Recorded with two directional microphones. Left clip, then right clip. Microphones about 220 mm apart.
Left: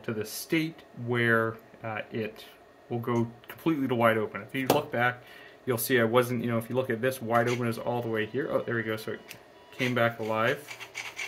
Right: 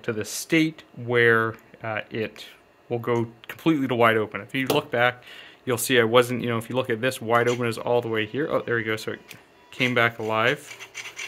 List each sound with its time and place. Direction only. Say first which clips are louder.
0.0 s speech: right 5 dB; 55° right (ahead or behind)